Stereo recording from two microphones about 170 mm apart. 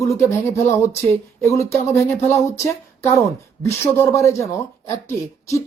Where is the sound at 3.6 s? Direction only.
15° left (ahead or behind).